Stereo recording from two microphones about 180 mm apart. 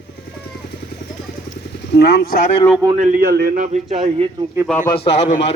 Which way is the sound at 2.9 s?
45° right (ahead or behind).